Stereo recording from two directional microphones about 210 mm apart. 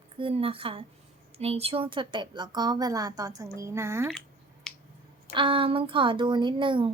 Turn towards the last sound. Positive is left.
turn(degrees=-25)  # may be behind; listen again after turning